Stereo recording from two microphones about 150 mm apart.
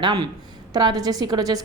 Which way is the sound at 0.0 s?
25° right (ahead or behind).